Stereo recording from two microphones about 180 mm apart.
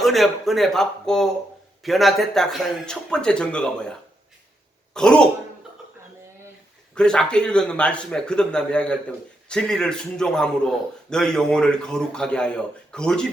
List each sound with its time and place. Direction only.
0.0 s speech: centre (ahead or behind)
4.9 s speech: 5° left (ahead or behind)
6.9 s speech: 5° left (ahead or behind)